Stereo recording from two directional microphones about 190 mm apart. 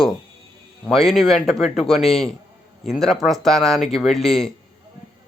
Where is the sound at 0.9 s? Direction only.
Centre (ahead or behind).